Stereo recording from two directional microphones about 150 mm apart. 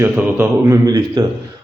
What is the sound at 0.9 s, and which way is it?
Speech, 25° right (ahead or behind).